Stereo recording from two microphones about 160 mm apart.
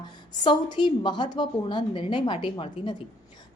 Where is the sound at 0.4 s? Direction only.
30° left (ahead or behind).